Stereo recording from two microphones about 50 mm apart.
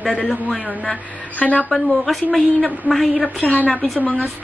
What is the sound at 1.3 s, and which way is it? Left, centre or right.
Speech, left.